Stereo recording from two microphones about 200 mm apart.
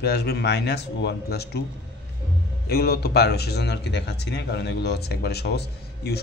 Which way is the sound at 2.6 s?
50° left (ahead or behind).